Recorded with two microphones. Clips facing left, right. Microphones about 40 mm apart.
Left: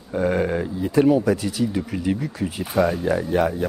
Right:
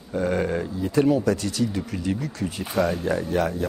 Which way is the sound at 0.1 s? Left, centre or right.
Centre.